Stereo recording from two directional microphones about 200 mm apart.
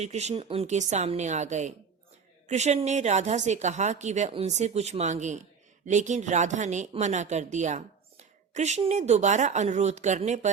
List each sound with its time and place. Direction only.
0.0 s speech: 35° right (ahead or behind)